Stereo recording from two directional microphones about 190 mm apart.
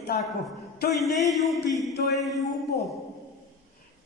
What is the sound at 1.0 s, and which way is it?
Music, centre (ahead or behind).